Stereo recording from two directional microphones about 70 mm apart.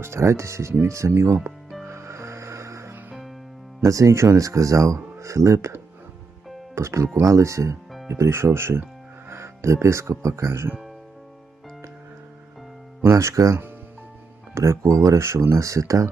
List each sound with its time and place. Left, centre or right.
0.0 s speech: right
1.1 s speech: right
1.9 s music: right
3.8 s speech: right
6.7 s speech: right
13.0 s speech: right